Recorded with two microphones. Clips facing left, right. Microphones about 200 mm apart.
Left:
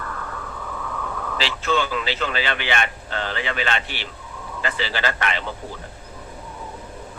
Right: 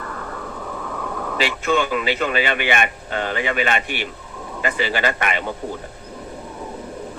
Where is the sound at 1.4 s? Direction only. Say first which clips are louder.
Right 3 dB; 15° right (ahead or behind).